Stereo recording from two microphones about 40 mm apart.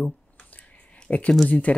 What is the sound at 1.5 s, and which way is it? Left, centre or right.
Speech, left.